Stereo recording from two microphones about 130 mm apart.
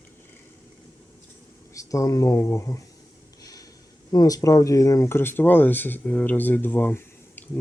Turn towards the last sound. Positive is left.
turn(degrees=15)  # may be behind; listen again after turning